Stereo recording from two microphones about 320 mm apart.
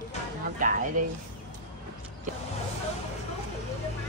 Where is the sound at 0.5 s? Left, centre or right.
Right.